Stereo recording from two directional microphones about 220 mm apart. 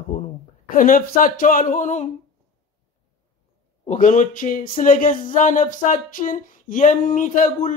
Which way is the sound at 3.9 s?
35° left (ahead or behind).